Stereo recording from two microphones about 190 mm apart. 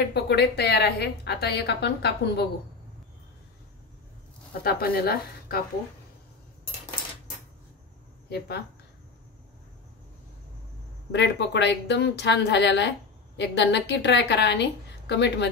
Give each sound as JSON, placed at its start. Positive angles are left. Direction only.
{"t": 0.1, "sound": "a woman's voice", "side_deg": 60}
{"t": 4.6, "sound": "a woman's voice", "side_deg": 55}
{"t": 8.3, "sound": "a woman's voice", "side_deg": 60}
{"t": 11.1, "sound": "a woman's voice", "side_deg": 65}